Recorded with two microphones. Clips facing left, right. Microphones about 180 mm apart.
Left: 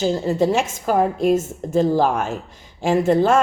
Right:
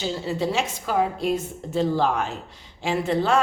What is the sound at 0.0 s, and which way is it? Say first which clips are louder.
A woman's voice: left 7 dB; 45° left (ahead or behind).